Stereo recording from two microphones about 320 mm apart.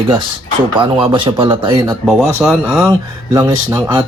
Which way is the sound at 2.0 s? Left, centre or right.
Centre.